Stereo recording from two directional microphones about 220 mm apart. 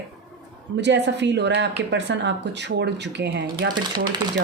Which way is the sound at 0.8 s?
55° right (ahead or behind).